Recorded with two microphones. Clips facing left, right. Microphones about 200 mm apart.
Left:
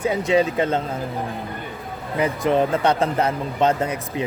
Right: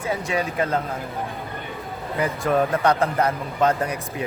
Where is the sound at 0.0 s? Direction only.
20° left (ahead or behind).